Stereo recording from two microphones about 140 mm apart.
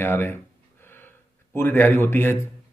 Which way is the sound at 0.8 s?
15° left (ahead or behind).